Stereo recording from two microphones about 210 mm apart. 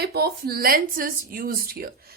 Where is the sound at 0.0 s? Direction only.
50° right (ahead or behind).